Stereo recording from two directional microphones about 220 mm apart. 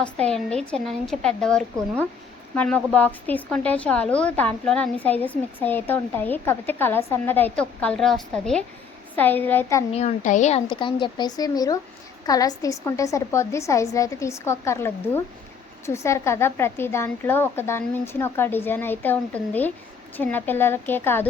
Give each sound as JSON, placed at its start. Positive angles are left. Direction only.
{"t": 0.0, "sound": "a woman's voice", "side_deg": 5}
{"t": 9.9, "sound": "a woman's voice", "side_deg": 30}